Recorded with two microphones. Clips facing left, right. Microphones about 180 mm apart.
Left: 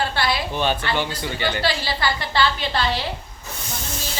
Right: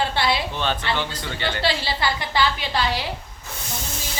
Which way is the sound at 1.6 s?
20° right (ahead or behind).